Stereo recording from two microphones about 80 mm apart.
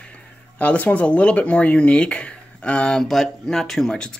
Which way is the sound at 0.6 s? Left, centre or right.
Centre.